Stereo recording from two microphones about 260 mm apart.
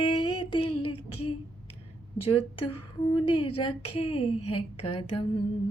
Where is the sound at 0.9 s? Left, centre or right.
Left.